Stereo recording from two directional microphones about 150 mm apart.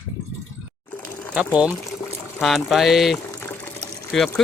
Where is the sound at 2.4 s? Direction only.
Centre (ahead or behind).